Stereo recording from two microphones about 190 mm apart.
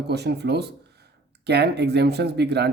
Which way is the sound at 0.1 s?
60° right (ahead or behind).